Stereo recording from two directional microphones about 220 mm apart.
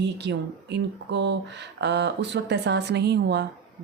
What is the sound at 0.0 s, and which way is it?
Speech, 50° right (ahead or behind).